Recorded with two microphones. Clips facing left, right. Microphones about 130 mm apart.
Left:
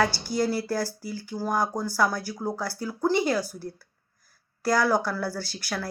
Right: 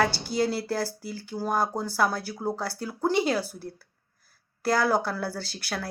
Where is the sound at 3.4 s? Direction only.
60° right (ahead or behind).